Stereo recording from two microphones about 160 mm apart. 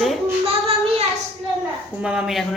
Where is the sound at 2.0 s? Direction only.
5° right (ahead or behind).